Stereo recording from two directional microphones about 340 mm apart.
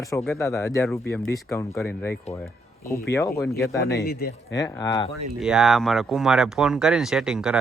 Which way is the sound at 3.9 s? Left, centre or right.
Left.